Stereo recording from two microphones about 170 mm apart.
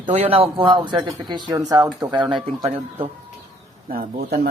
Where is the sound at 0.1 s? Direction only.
40° right (ahead or behind); by 2.2 s 25° right (ahead or behind).